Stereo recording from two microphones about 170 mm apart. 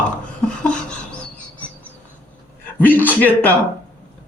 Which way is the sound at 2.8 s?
10° left (ahead or behind).